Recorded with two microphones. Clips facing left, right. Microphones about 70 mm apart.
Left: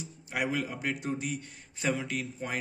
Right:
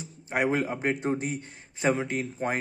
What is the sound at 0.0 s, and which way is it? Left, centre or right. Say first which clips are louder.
A man's voice: right 6 dB; right.